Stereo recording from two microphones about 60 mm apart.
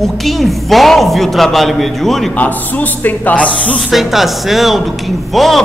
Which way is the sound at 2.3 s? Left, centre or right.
Left.